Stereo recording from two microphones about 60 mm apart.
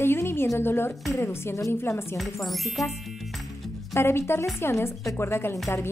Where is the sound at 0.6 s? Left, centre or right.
Left.